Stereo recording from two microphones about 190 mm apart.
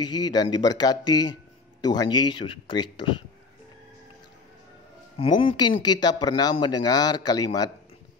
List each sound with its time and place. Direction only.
0.0 s speech: 20° left (ahead or behind)
5.2 s speech: 25° left (ahead or behind)